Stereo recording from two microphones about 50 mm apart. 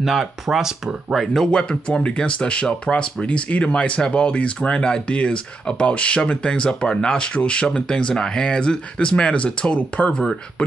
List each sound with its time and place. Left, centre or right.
0.0 s speech: centre
1.2 s speech: centre; by 10.1 s left